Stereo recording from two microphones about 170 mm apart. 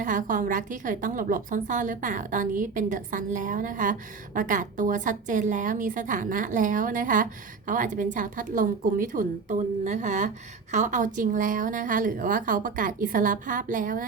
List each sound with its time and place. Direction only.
0.0 s a woman's voice: 50° right (ahead or behind)